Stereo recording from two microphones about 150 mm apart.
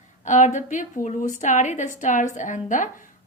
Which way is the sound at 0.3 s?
55° left (ahead or behind).